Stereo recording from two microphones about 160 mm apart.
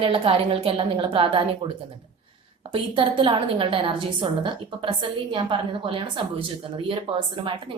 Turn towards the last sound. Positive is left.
turn(degrees=-35)  # may be behind; listen again after turning